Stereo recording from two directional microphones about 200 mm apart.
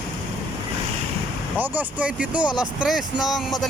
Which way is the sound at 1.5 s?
10° right (ahead or behind).